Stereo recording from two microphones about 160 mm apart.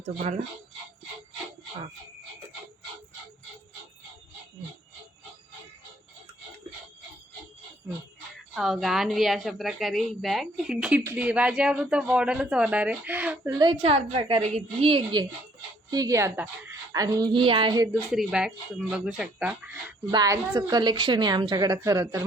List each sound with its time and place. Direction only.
0.0 s speech: 45° right (ahead or behind)
8.5 s a woman's voice: centre (ahead or behind)
13.6 s a woman's voice: 35° right (ahead or behind)
17.9 s a woman's voice: centre (ahead or behind)
20.1 s a woman's voice: 25° right (ahead or behind)